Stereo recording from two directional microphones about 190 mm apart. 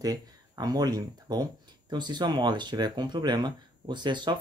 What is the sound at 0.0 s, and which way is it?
Speech, 20° right (ahead or behind).